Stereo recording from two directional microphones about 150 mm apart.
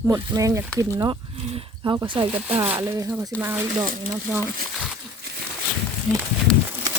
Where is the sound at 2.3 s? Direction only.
10° right (ahead or behind).